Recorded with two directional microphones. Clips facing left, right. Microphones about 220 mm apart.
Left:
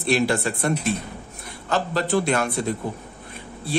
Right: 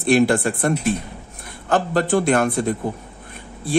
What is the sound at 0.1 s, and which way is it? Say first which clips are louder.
Speech: right 5 dB; 50° right (ahead or behind).